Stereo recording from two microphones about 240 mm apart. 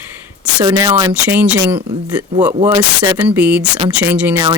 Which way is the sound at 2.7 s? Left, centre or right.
Centre.